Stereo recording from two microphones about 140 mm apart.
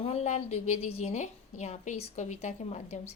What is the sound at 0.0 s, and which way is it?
Speech, 50° left (ahead or behind).